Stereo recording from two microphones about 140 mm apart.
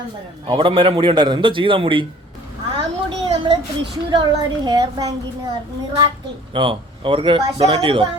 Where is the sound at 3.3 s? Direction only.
35° right (ahead or behind).